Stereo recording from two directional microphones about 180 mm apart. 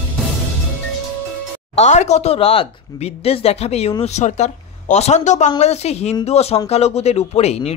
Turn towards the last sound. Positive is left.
turn(degrees=35)  # may be behind; listen again after turning